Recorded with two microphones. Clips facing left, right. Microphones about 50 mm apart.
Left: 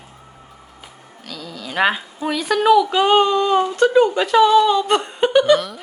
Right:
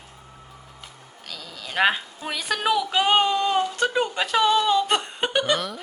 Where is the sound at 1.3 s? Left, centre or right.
Centre.